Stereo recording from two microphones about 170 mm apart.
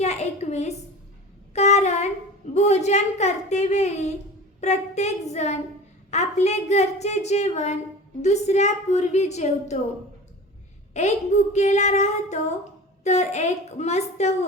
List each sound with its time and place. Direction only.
0.0 s a sound: 40° left (ahead or behind)
1.5 s child singing: 40° left (ahead or behind)
2.6 s a woman's voice: 40° left (ahead or behind)
10.9 s a woman's voice: 40° left (ahead or behind)